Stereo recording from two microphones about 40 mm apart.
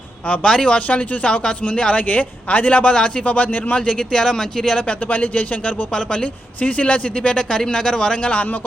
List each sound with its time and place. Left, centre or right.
0.4 s speech: centre
0.8 s a man's voice: left
4.9 s a man's voice: left
5.9 s speech: left
6.6 s a man's voice: left; by 8.2 s centre
8.2 s a man's voice: left